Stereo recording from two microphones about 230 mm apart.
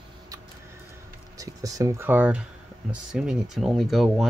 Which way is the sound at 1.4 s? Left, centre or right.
Centre.